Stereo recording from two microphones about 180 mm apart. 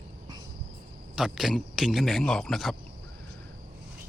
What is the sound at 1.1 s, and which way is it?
Speech, centre (ahead or behind).